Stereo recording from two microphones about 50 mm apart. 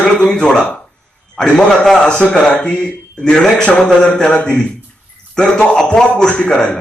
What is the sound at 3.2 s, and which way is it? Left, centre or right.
Speech, centre.